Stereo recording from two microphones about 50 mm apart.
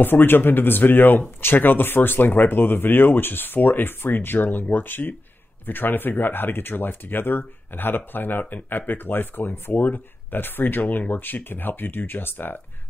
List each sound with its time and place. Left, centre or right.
0.0 s speech: left